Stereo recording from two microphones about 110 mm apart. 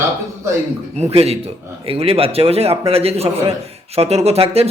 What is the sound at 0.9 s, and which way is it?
A man's voice, 75° right (ahead or behind).